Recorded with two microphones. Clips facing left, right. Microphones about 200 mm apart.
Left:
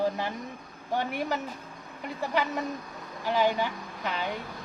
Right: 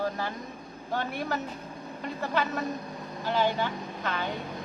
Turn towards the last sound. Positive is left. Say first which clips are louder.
# right 1 dB
turn(degrees=15)  # may be behind; listen again after turning